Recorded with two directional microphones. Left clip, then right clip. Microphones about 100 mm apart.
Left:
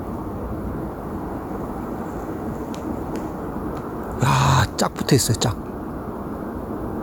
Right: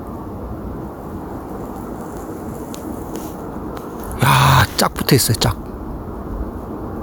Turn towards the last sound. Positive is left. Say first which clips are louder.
# right 4 dB
turn(degrees=-20)  # may be behind; listen again after turning